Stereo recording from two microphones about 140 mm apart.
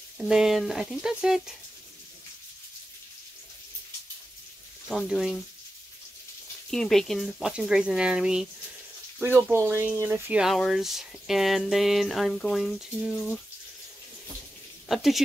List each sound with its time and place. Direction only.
0.2 s speech: centre (ahead or behind)
4.9 s speech: centre (ahead or behind)
6.7 s speech: 5° left (ahead or behind); by 10.4 s 15° right (ahead or behind)
10.4 s speech: centre (ahead or behind)
14.9 s speech: centre (ahead or behind)